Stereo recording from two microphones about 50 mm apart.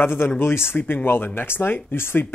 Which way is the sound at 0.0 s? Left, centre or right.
Left.